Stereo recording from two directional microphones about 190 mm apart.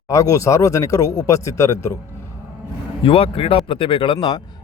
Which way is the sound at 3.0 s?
30° left (ahead or behind).